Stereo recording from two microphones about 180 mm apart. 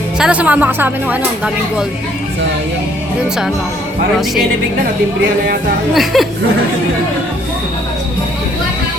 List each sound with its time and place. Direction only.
0.2 s a woman's voice: 5° right (ahead or behind)
5.9 s speech: centre (ahead or behind)